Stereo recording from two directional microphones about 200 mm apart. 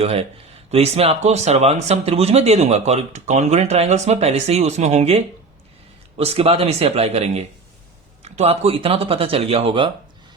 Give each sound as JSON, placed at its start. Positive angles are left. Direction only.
{"t": 0.0, "sound": "speech", "side_deg": -30}